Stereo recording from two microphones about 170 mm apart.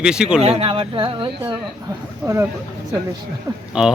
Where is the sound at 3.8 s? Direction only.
5° right (ahead or behind).